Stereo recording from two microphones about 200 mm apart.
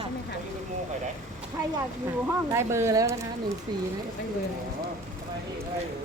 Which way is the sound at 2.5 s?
15° right (ahead or behind).